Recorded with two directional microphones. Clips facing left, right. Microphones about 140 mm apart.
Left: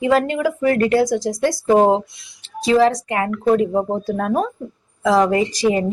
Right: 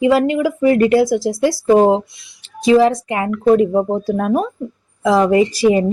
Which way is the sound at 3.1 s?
20° right (ahead or behind).